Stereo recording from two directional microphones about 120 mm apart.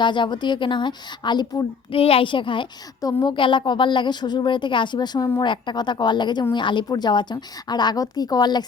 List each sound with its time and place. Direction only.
0.0 s a woman's voice: 40° left (ahead or behind)
2.0 s a child's voice: 50° left (ahead or behind)
3.0 s a woman's voice: 30° left (ahead or behind)
3.3 s a woman's voice: 45° left (ahead or behind)